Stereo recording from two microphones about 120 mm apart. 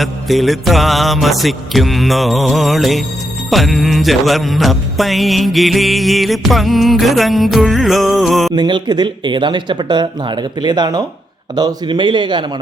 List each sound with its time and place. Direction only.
0.0 s music: centre (ahead or behind)
8.5 s speech: 40° right (ahead or behind)